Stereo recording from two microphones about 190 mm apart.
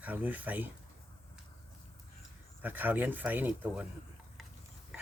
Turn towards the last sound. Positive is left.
turn(degrees=-5)  # may be behind; listen again after turning